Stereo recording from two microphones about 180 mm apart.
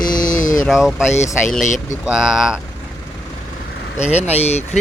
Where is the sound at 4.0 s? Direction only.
35° left (ahead or behind).